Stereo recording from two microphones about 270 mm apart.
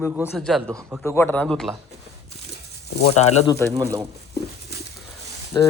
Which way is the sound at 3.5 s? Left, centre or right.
Centre.